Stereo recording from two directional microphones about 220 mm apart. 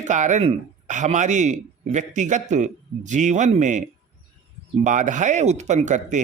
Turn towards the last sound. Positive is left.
turn(degrees=-35)  # may be behind; listen again after turning